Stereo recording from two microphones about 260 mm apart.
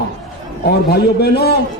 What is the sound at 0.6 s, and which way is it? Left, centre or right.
Speech, left.